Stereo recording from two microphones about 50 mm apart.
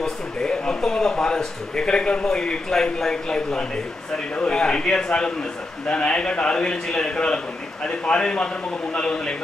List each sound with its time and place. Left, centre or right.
0.0 s a man's voice: centre